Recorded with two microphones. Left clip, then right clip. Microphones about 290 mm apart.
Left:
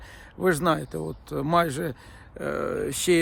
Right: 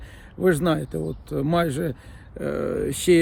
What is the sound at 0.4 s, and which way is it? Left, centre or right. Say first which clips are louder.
Speech: right 2 dB; centre.